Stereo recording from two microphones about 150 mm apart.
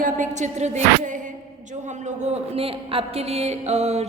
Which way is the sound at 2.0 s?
50° right (ahead or behind).